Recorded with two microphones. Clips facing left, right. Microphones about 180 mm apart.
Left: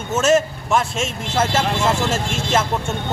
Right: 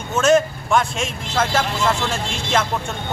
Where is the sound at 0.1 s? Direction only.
5° left (ahead or behind).